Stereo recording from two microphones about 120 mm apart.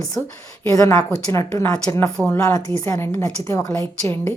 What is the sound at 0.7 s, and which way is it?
A woman's voice, 30° left (ahead or behind).